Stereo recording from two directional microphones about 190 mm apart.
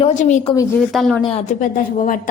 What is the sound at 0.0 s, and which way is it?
Speech, 40° left (ahead or behind).